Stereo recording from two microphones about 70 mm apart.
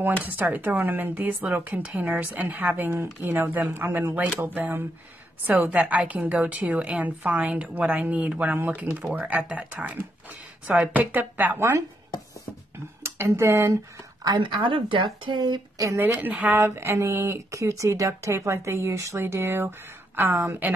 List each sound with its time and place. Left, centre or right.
0.0 s a woman's voice: right
13.0 s speech: right
14.2 s speech: right
16.0 s a woman's voice: right
16.5 s a woman's voice: right